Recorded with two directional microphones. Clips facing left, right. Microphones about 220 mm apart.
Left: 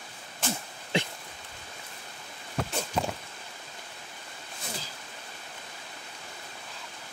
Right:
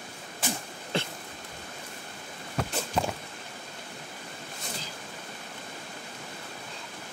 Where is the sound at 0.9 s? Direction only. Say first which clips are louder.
Left 2 dB; 15° left (ahead or behind).